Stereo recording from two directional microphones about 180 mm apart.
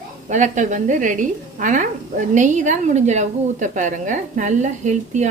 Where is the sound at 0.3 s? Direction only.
40° right (ahead or behind).